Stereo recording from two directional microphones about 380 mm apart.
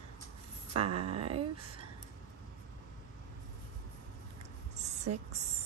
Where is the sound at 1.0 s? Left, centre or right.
Centre.